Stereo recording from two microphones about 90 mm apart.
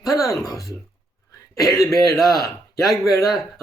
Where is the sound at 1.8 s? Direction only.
40° left (ahead or behind).